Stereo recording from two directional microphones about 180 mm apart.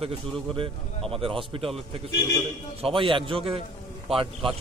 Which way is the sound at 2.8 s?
30° right (ahead or behind).